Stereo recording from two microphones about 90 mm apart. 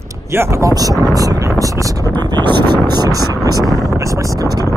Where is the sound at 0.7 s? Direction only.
45° right (ahead or behind).